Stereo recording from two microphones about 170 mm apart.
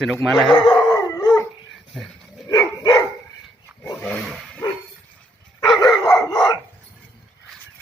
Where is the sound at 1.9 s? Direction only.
Centre (ahead or behind).